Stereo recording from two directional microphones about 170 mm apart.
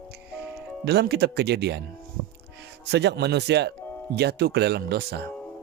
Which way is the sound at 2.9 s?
90° right.